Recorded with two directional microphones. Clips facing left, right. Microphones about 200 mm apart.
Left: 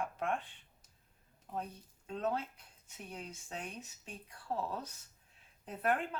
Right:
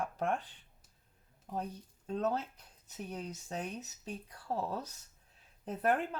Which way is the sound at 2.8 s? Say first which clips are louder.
Right 5 dB; 40° right (ahead or behind).